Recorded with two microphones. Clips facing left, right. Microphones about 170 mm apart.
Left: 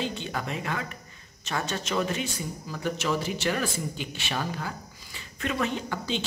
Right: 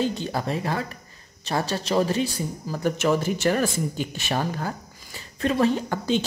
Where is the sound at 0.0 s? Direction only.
40° right (ahead or behind).